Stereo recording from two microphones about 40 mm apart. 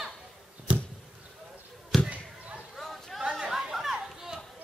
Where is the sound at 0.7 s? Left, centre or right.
Right.